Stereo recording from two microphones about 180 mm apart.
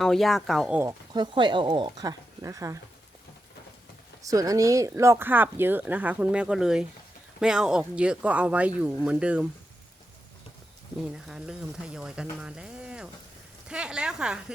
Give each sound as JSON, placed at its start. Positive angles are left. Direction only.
{"t": 0.0, "sound": "speech", "side_deg": 0}
{"t": 0.8, "sound": "speech", "side_deg": -20}
{"t": 4.2, "sound": "speech", "side_deg": -20}
{"t": 11.0, "sound": "speech", "side_deg": -5}